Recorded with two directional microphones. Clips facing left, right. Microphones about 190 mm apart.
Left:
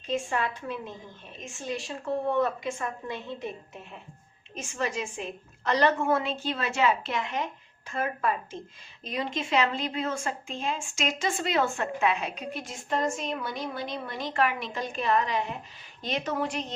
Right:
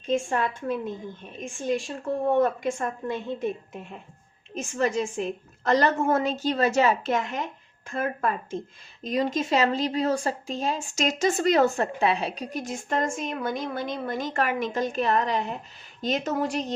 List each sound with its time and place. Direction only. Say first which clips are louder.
0.1 s speech: right 4 dB; 45° right (ahead or behind)
2.2 s speech: right 6 dB; 45° right (ahead or behind)